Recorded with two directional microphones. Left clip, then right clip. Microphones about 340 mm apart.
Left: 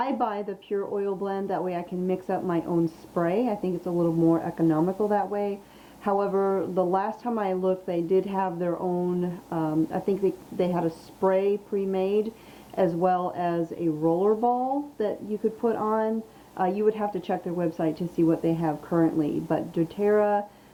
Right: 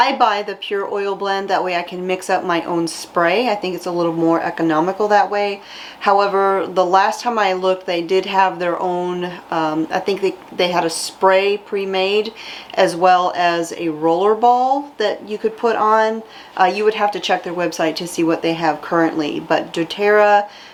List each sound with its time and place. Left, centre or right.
0.0 s a woman's voice: centre
14.9 s a woman's voice: centre